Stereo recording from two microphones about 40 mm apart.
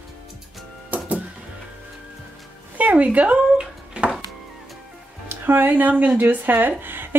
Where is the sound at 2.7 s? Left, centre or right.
Right.